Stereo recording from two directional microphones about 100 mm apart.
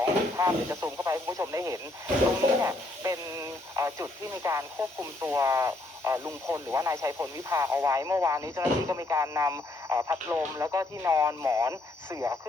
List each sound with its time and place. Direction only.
0.0 s speech: 30° right (ahead or behind)